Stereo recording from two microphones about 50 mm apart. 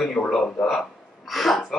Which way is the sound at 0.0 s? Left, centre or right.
Centre.